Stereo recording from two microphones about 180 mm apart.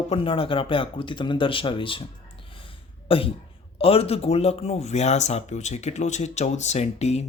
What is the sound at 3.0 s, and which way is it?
Speech, 30° left (ahead or behind).